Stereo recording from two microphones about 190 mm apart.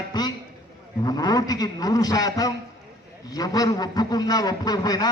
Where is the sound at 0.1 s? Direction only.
20° left (ahead or behind).